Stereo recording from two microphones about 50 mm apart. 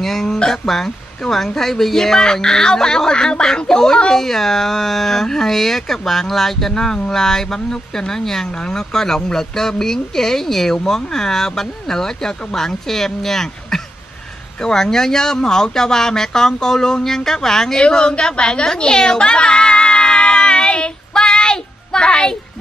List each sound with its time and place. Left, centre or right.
0.0 s speech: centre
17.8 s speech: centre